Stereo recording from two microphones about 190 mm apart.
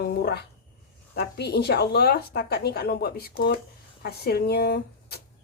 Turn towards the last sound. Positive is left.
turn(degrees=55)  # may be behind; listen again after turning